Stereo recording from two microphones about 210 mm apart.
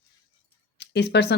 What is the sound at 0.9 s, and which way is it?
Speech, 50° left (ahead or behind).